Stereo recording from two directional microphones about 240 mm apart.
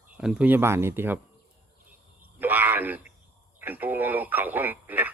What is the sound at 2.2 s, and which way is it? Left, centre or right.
A man's voice, centre.